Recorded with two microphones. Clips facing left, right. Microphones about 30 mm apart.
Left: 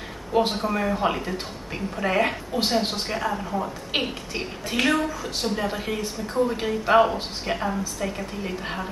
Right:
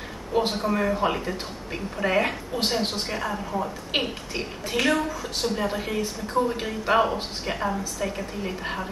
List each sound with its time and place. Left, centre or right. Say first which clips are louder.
0.3 s speech: left 1 dB; centre
4.4 s a woman's voice: left 1 dB; centre